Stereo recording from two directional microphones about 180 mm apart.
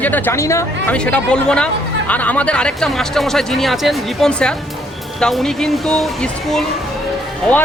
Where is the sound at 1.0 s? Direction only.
5° left (ahead or behind).